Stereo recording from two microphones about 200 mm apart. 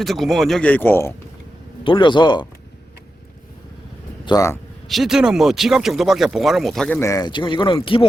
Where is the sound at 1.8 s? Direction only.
25° left (ahead or behind).